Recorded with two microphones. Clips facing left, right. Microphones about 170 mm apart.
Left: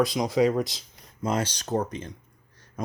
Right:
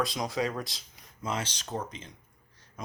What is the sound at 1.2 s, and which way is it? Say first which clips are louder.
Speech: left 7 dB; 40° left (ahead or behind).